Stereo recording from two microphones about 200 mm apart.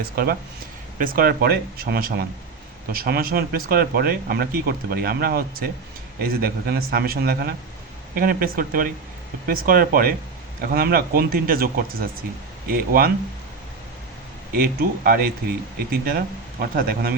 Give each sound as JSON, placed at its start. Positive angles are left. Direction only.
{"t": 0.0, "sound": "speech", "side_deg": -50}
{"t": 14.5, "sound": "speech", "side_deg": -45}